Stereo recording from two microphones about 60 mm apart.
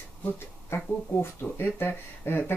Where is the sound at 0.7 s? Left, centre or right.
Left.